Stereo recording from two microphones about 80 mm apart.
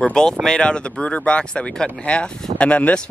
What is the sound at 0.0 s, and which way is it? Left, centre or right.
Speech, centre.